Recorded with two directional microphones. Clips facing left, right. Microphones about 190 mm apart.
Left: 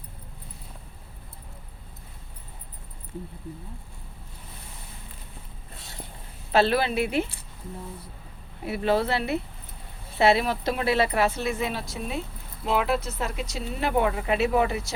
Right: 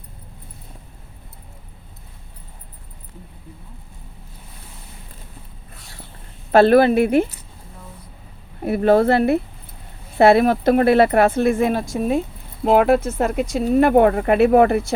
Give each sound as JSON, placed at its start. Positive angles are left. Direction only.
{"t": 5.7, "sound": "a sound", "side_deg": 20}
{"t": 6.5, "sound": "speech", "side_deg": -50}
{"t": 8.6, "sound": "speech", "side_deg": -50}